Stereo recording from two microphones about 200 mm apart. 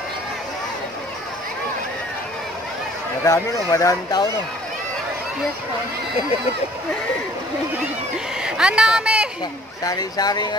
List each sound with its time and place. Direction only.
3.3 s speech: 15° left (ahead or behind)
8.4 s speech: 5° right (ahead or behind)
9.8 s speech: 20° left (ahead or behind)